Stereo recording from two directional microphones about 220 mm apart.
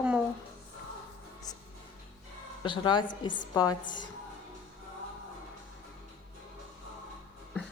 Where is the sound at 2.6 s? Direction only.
20° left (ahead or behind).